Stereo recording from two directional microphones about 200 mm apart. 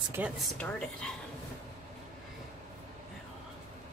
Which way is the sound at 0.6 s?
5° left (ahead or behind).